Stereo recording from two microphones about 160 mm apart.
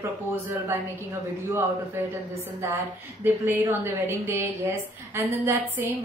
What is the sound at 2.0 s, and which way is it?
Speech, 15° right (ahead or behind).